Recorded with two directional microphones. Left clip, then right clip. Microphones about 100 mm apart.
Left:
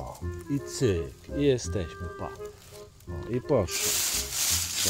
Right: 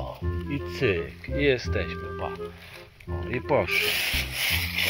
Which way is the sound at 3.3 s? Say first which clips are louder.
Right 2 dB; 55° left (ahead or behind).